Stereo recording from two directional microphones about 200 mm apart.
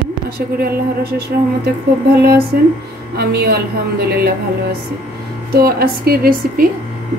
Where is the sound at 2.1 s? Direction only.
50° right (ahead or behind).